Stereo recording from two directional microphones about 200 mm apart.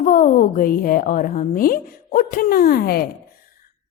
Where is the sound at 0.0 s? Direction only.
40° left (ahead or behind).